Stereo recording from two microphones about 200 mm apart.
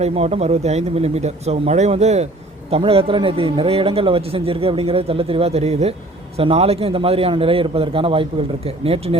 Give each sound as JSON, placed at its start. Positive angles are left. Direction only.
{"t": 0.0, "sound": "a man's voice", "side_deg": -30}